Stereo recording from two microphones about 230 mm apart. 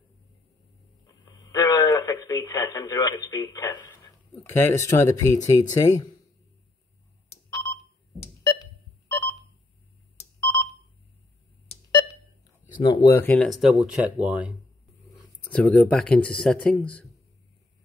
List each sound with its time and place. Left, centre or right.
1.0 s radio: centre
4.4 s speech: centre
7.4 s telephone dialing: centre
10.4 s telephone dialing: centre
11.7 s pulse: centre
12.8 s speech: centre
15.4 s speech: centre